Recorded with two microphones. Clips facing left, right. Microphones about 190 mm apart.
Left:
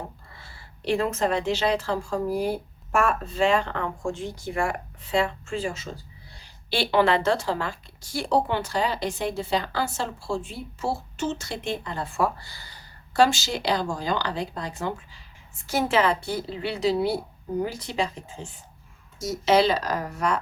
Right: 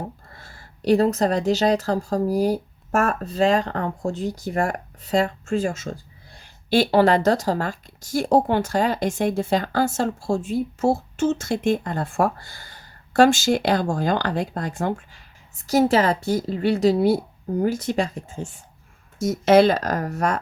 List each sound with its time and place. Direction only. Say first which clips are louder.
0.3 s a woman's voice: right 2 dB; 45° right (ahead or behind)
15.6 s a woman's voice: right 5 dB; 40° right (ahead or behind)
19.2 s a woman's voice: right 5 dB; 50° right (ahead or behind)